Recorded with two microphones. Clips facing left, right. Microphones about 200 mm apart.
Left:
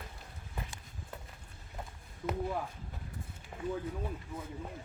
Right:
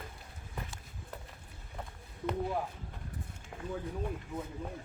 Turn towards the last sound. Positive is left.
turn(degrees=5)  # may be behind; listen again after turning